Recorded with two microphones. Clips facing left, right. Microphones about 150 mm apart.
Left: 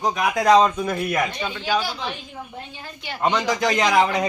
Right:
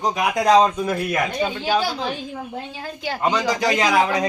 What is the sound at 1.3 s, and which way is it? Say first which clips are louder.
Speech: right 3 dB; 35° right (ahead or behind).